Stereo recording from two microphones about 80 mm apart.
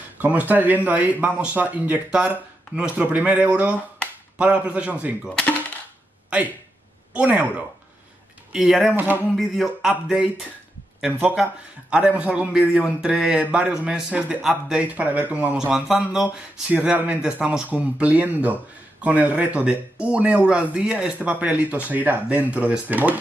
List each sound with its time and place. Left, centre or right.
0.2 s speech: right
7.2 s speech: centre
8.9 s speech: right
9.3 s speech: centre
11.9 s speech: centre
15.5 s speech: centre; by 23.1 s right